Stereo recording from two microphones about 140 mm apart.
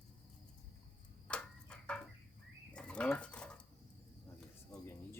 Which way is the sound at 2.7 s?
5° left (ahead or behind).